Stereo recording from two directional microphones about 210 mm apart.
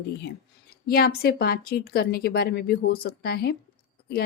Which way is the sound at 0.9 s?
45° left (ahead or behind).